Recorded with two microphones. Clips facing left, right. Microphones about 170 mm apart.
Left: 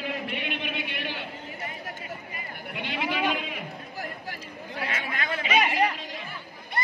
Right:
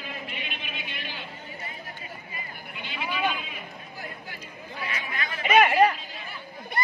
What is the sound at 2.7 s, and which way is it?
Sheep, 70° left (ahead or behind).